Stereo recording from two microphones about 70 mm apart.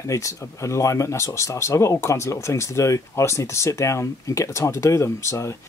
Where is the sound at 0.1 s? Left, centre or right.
Left.